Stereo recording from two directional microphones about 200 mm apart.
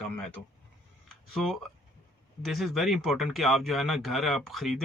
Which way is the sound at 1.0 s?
Centre (ahead or behind).